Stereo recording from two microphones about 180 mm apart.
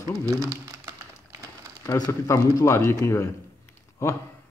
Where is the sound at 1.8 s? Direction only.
15° left (ahead or behind).